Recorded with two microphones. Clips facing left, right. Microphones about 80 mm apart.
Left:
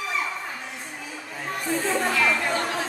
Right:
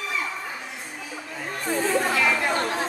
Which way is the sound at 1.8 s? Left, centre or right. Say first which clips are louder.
Right 2 dB; centre.